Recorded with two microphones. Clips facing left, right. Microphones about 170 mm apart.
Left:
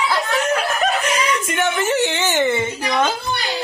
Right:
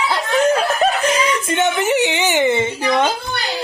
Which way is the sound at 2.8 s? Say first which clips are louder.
Right 2 dB; 25° right (ahead or behind).